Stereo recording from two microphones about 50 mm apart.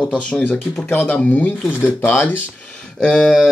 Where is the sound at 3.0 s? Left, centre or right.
Centre.